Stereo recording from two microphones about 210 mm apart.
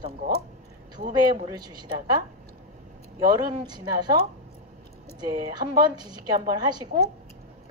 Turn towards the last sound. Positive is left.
turn(degrees=-20)  # may be behind; listen again after turning